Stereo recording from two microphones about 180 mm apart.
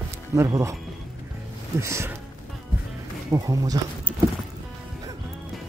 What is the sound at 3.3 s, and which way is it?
Speech, 20° right (ahead or behind).